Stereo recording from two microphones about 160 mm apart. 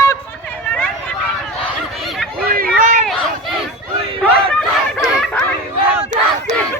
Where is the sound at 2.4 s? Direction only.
65° right (ahead or behind).